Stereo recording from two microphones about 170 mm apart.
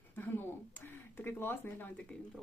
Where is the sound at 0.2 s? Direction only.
10° left (ahead or behind).